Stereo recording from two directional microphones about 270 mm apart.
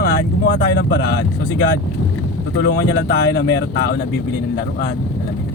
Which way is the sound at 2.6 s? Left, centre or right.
Left.